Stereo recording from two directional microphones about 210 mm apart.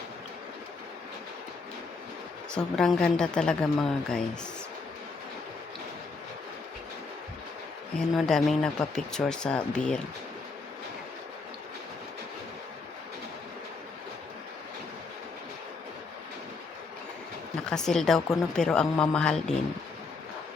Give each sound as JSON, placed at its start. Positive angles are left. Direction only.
{"t": 2.6, "sound": "speech", "side_deg": 5}
{"t": 7.9, "sound": "speech", "side_deg": 0}
{"t": 17.7, "sound": "speech", "side_deg": 5}